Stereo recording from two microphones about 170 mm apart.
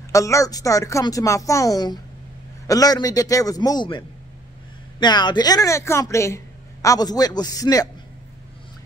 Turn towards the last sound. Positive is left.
turn(degrees=20)  # may be behind; listen again after turning